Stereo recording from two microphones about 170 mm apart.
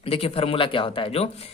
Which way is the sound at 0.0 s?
35° left (ahead or behind).